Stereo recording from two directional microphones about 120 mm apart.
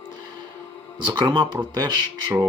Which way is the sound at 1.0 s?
40° right (ahead or behind).